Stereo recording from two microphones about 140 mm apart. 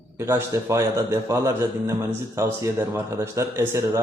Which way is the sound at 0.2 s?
15° right (ahead or behind).